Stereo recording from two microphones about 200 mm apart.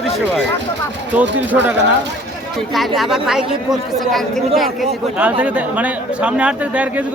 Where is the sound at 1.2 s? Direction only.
5° right (ahead or behind).